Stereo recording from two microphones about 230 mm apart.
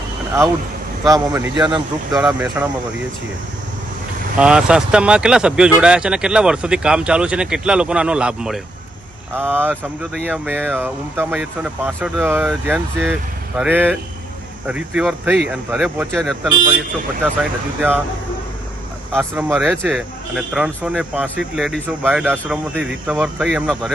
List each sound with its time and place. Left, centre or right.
1.0 s speech: centre
2.1 s speech: centre
4.4 s speech: centre
17.7 s speech: centre
19.1 s speech: centre